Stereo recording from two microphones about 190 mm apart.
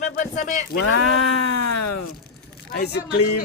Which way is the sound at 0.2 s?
40° left (ahead or behind).